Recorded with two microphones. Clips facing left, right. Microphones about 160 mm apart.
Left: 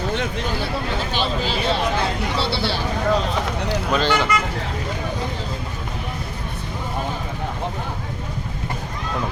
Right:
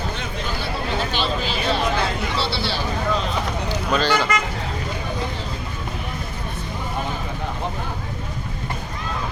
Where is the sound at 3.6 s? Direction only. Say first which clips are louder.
Left 1 dB; 20° left (ahead or behind).